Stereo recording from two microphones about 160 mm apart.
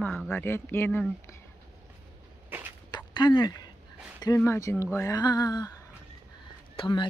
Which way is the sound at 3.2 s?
25° left (ahead or behind).